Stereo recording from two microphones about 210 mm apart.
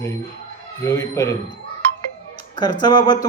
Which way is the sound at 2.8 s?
20° left (ahead or behind).